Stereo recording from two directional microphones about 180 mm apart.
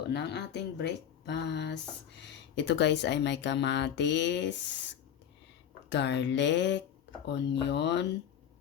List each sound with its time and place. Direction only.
0.1 s speech: 70° left (ahead or behind)
5.9 s speech: 75° left (ahead or behind)